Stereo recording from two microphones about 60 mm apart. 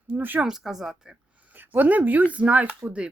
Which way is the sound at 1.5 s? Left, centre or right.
Right.